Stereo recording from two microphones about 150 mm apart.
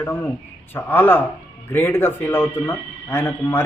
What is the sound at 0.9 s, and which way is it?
A man's voice, 15° left (ahead or behind).